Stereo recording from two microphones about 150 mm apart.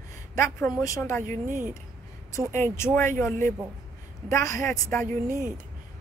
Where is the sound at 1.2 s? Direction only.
60° right (ahead or behind).